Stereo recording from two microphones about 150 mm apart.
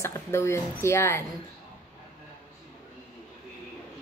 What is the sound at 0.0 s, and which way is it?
Speech, 15° left (ahead or behind).